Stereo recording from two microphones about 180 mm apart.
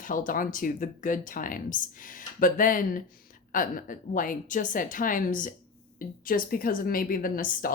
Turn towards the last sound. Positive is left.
turn(degrees=50)  # may be behind; listen again after turning